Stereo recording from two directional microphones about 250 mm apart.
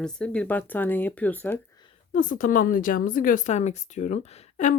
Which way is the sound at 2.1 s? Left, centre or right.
Left.